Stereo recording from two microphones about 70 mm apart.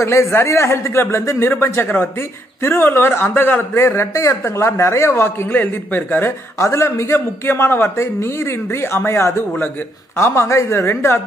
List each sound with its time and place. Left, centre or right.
0.0 s a man's voice: left
5.5 s speech: left
6.6 s a man's voice: left